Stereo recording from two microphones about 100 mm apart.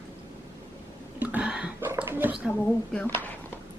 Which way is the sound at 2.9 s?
15° left (ahead or behind).